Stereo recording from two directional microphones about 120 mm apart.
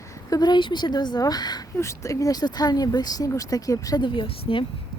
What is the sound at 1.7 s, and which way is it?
Speech, 25° left (ahead or behind).